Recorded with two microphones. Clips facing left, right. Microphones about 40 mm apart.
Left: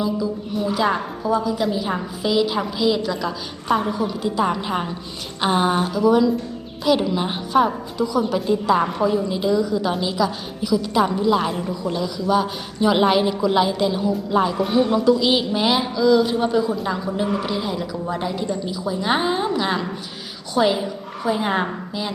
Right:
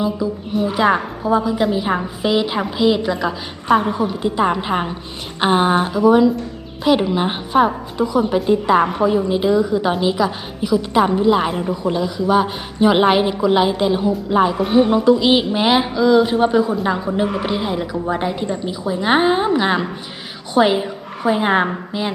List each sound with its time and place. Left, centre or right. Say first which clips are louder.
0.7 s a woman's voice: right 4 dB; right